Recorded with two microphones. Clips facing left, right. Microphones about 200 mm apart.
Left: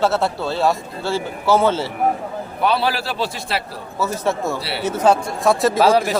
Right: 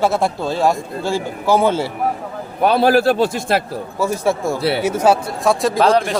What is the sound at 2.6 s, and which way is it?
Speech, 45° right (ahead or behind).